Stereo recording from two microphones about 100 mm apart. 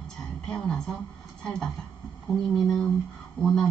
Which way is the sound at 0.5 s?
5° left (ahead or behind).